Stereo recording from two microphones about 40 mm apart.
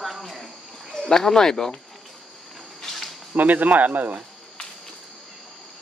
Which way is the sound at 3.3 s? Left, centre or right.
Right.